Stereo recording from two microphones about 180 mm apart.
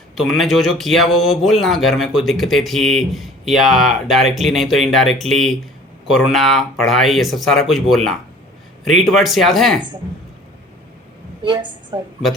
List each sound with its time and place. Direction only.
0.2 s speech: centre (ahead or behind)
11.4 s a woman's voice: 25° right (ahead or behind)